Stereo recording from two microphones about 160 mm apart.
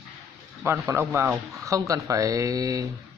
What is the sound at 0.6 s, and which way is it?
Speech, 15° right (ahead or behind).